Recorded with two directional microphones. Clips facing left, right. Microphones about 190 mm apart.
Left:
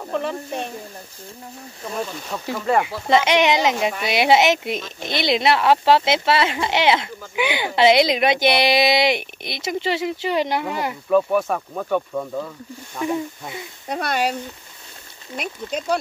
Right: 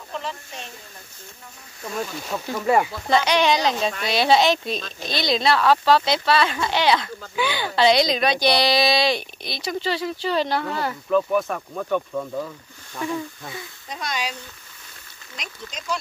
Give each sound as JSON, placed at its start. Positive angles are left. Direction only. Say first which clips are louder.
{"t": 0.0, "sound": "speech", "louder": "left 7 dB", "side_deg": 55}
{"t": 2.3, "sound": "speech", "louder": "even", "side_deg": -5}
{"t": 2.8, "sound": "speech", "louder": "left 3 dB", "side_deg": 20}
{"t": 12.9, "sound": "speech", "louder": "left 3 dB", "side_deg": 20}
{"t": 13.8, "sound": "speech", "louder": "left 8 dB", "side_deg": 60}
{"t": 15.3, "sound": "speech", "louder": "left 10 dB", "side_deg": 60}